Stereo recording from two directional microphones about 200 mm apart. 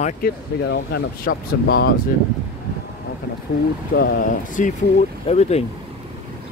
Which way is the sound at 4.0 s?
40° left (ahead or behind).